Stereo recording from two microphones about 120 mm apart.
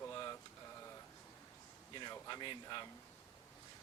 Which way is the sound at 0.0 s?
25° left (ahead or behind).